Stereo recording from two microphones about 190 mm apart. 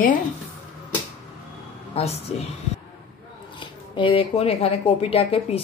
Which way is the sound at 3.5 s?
25° left (ahead or behind).